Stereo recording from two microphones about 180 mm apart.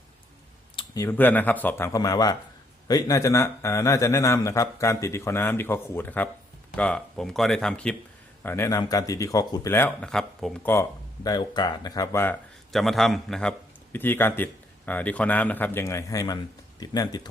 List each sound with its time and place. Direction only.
0.9 s a man's voice: 15° left (ahead or behind)
12.7 s a man's voice: centre (ahead or behind); by 17.2 s 20° left (ahead or behind)